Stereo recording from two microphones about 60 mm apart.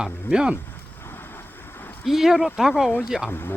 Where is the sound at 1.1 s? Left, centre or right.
Left.